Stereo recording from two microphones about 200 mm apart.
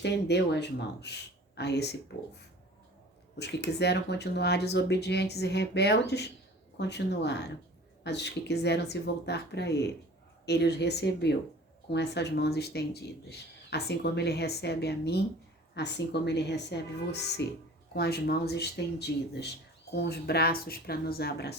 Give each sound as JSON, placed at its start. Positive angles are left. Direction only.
{"t": 0.0, "sound": "speech", "side_deg": 60}
{"t": 3.3, "sound": "speech", "side_deg": 55}